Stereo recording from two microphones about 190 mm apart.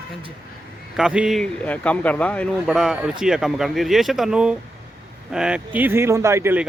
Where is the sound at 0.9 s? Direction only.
5° right (ahead or behind).